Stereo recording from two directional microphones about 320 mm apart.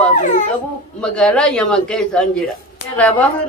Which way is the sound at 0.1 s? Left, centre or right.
Left.